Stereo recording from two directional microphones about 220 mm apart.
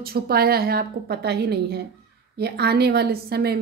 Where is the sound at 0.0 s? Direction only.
45° right (ahead or behind).